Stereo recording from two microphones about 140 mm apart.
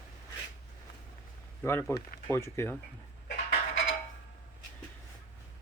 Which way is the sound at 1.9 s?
20° left (ahead or behind).